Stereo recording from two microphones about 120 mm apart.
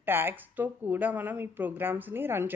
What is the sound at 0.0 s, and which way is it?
Speech, 15° right (ahead or behind).